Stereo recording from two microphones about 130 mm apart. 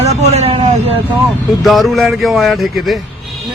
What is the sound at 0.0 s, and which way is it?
Vehicle, 60° right (ahead or behind).